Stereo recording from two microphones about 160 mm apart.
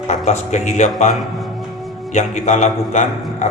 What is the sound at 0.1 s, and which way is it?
Speech, 45° left (ahead or behind).